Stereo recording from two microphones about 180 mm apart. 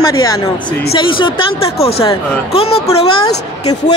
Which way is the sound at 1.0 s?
30° left (ahead or behind).